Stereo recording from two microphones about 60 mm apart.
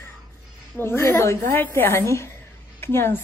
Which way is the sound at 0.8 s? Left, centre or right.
Left.